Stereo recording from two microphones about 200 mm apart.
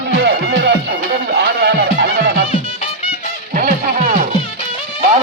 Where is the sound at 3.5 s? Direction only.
40° right (ahead or behind).